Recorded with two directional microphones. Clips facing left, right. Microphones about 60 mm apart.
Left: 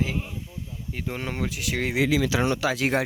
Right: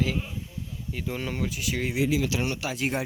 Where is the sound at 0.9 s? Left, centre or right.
Left.